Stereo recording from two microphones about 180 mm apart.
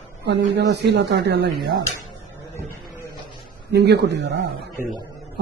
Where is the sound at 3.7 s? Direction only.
70° right (ahead or behind).